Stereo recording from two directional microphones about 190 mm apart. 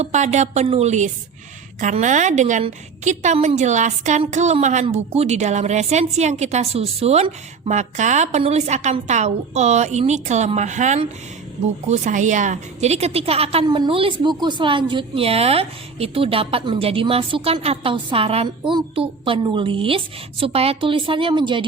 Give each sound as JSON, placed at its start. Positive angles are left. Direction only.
{"t": 0.0, "sound": "a woman's voice", "side_deg": -35}